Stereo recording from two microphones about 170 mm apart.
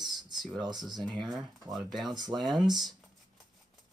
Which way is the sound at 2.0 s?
25° right (ahead or behind).